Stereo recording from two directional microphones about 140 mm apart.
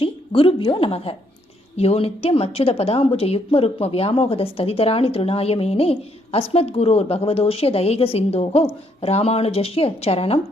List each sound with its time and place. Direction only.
0.0 s a woman's voice: 40° left (ahead or behind)